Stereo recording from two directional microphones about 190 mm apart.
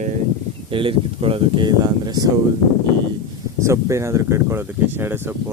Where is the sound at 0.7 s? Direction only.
25° right (ahead or behind).